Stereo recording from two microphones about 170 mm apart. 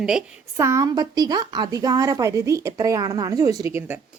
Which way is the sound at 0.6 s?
15° right (ahead or behind).